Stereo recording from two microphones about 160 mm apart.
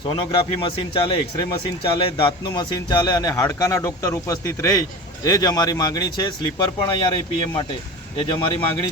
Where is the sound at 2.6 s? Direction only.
25° left (ahead or behind).